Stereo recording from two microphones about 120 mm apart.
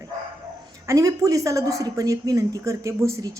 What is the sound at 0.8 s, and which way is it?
A woman's voice, 30° right (ahead or behind).